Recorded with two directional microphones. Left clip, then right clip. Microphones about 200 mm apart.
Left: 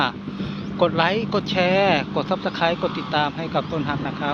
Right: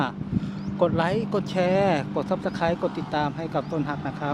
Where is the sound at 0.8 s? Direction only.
5° right (ahead or behind).